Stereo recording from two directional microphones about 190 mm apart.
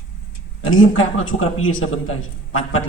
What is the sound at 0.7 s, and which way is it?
A man's voice, 90° left.